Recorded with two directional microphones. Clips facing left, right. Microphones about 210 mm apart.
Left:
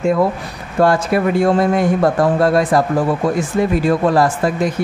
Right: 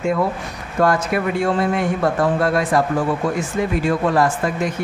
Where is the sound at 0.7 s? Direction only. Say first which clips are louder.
Left 4 dB; 30° left (ahead or behind).